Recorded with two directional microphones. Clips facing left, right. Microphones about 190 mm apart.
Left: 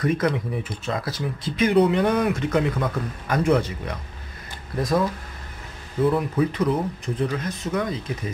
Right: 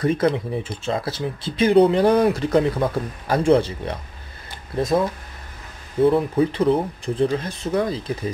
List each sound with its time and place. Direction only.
0.0 s speech: 30° right (ahead or behind)
6.0 s speech: 30° right (ahead or behind)